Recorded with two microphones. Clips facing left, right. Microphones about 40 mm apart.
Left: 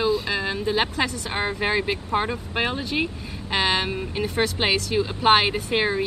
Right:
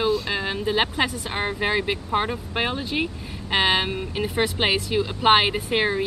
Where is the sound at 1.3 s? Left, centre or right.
Centre.